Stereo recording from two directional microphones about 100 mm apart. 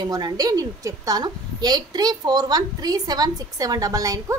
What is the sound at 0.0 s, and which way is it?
A woman's voice, 45° right (ahead or behind).